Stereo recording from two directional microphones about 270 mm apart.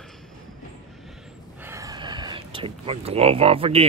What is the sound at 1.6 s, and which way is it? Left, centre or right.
Speech, centre.